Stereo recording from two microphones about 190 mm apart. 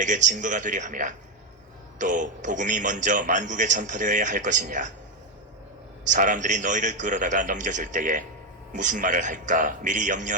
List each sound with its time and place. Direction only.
0.0 s a man's voice: 40° right (ahead or behind)
6.1 s a man's voice: 45° right (ahead or behind)